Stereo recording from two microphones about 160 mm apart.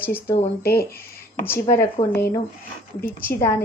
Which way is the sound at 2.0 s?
45° left (ahead or behind).